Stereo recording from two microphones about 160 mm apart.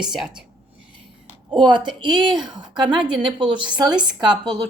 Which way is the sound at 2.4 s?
5° right (ahead or behind).